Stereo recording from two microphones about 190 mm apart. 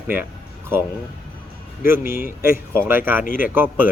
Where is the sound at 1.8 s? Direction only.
10° right (ahead or behind).